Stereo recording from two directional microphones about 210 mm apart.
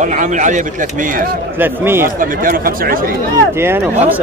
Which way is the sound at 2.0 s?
40° right (ahead or behind).